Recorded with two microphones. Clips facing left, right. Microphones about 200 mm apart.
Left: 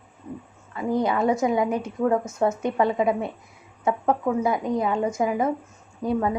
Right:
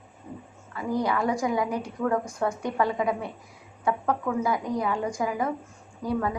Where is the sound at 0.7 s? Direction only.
25° left (ahead or behind).